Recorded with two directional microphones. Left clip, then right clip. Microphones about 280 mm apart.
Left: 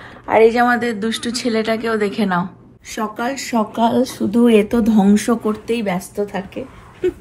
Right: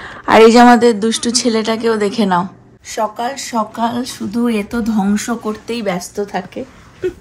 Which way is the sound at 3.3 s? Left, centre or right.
Right.